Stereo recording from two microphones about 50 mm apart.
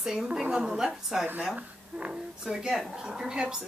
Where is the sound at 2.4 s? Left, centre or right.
Centre.